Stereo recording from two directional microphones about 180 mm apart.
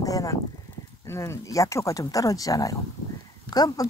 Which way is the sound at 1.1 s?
15° left (ahead or behind).